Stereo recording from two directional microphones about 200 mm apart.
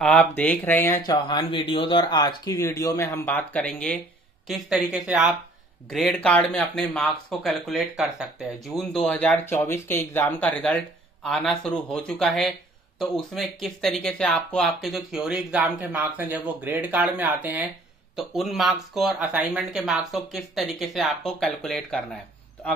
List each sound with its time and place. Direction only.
0.0 s speech: 5° left (ahead or behind)
1.1 s speech: 25° left (ahead or behind); by 22.7 s 5° left (ahead or behind)